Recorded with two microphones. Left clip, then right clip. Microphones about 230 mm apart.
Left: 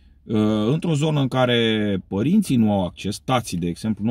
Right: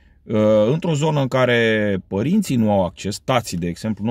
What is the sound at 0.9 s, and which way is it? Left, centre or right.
Speech, right.